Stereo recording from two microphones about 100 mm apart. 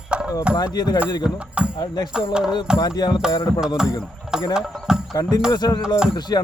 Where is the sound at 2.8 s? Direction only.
40° left (ahead or behind).